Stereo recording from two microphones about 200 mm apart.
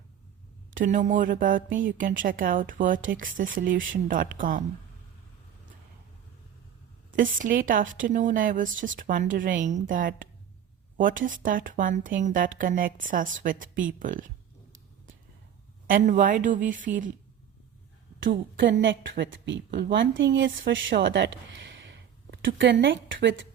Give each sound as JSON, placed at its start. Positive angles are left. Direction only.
{"t": 0.7, "sound": "a woman's voice", "side_deg": -40}
{"t": 7.2, "sound": "a woman's voice", "side_deg": -40}
{"t": 15.9, "sound": "speech", "side_deg": -40}
{"t": 18.2, "sound": "a woman's voice", "side_deg": -65}